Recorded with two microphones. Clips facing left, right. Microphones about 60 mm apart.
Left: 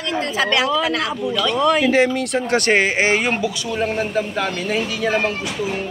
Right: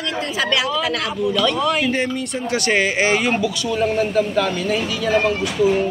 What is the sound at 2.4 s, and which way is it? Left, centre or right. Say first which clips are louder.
Speech: left 1 dB; left.